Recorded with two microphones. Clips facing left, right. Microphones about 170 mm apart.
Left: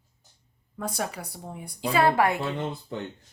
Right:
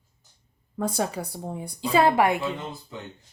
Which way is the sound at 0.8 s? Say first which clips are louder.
Right 5 dB; 30° right (ahead or behind).